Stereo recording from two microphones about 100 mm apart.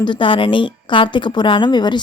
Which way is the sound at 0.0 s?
55° left (ahead or behind).